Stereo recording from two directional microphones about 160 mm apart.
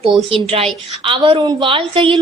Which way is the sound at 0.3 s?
35° right (ahead or behind).